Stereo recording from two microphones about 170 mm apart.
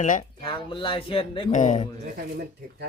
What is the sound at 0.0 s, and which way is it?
Speech, 50° left (ahead or behind).